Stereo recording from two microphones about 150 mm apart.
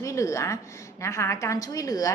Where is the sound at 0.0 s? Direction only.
20° left (ahead or behind).